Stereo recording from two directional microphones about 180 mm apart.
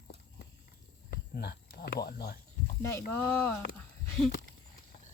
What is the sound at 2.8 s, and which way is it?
Speech, 15° left (ahead or behind).